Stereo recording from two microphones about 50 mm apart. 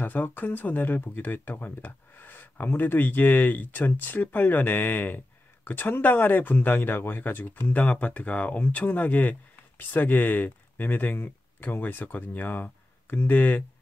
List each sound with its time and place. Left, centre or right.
0.0 s speech: left